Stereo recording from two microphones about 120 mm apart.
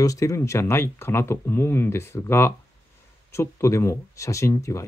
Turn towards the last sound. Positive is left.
turn(degrees=25)  # may be behind; listen again after turning